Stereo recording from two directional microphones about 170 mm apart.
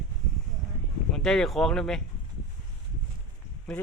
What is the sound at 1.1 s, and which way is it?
Speech, 5° left (ahead or behind).